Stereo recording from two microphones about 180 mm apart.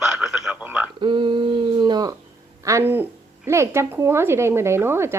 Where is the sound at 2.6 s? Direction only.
15° right (ahead or behind).